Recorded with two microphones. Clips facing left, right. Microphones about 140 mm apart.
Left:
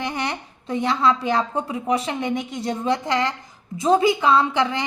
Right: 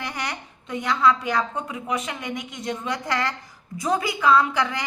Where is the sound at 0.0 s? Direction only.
25° left (ahead or behind).